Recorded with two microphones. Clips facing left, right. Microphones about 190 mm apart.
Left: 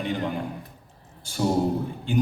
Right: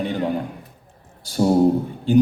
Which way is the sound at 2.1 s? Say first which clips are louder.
Right 9 dB; 40° right (ahead or behind).